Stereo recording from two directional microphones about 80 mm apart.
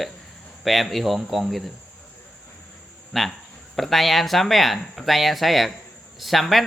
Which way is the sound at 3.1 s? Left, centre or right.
Centre.